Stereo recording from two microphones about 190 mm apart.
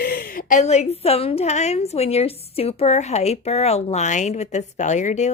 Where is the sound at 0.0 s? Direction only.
50° left (ahead or behind).